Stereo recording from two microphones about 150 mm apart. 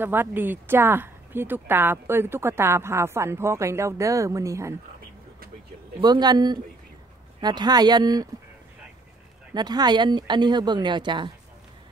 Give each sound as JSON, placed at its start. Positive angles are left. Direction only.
{"t": 0.0, "sound": "a woman's voice", "side_deg": -15}
{"t": 5.9, "sound": "speech", "side_deg": -30}
{"t": 9.5, "sound": "speech", "side_deg": -25}